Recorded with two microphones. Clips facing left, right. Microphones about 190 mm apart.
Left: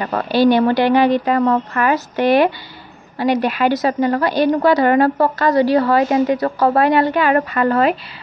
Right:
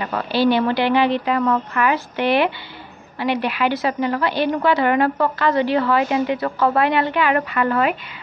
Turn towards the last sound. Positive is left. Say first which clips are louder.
# left 4 dB
turn(degrees=40)  # may be behind; listen again after turning